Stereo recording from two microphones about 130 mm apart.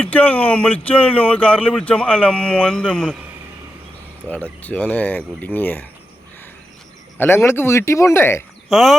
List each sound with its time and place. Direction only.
0.0 s speech: 10° left (ahead or behind)
4.3 s speech: 10° left (ahead or behind)
7.2 s speech: 20° left (ahead or behind)
8.7 s speech: centre (ahead or behind)